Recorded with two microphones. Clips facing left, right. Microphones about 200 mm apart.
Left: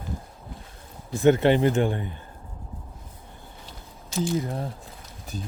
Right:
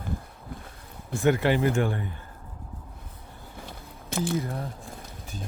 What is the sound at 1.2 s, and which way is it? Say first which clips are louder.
Speech: left 4 dB; 25° left (ahead or behind).